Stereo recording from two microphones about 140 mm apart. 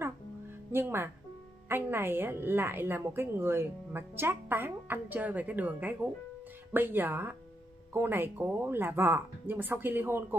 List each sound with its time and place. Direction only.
0.7 s a woman's voice: 15° right (ahead or behind)